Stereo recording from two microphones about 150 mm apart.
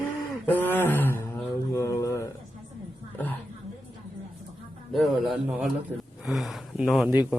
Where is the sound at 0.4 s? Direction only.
10° left (ahead or behind).